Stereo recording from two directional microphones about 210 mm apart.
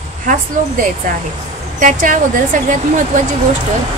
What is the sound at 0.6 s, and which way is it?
A woman's voice, 35° right (ahead or behind).